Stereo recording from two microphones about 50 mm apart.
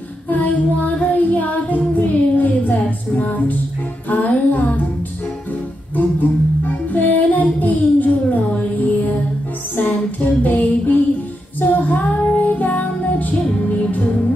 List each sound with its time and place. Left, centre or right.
0.3 s female singing: left
3.2 s music: left
6.6 s music: left
9.8 s child singing: left